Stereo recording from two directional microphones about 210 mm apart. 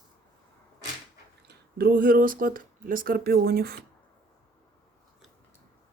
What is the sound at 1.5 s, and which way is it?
Speech, 45° right (ahead or behind).